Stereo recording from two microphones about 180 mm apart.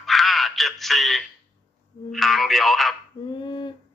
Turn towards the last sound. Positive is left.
turn(degrees=25)  # may be behind; listen again after turning